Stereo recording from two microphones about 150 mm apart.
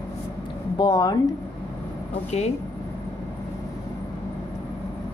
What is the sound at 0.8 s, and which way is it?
Speech, 25° left (ahead or behind).